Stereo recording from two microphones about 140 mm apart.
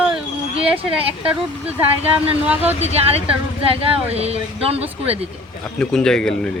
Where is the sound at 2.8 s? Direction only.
50° right (ahead or behind).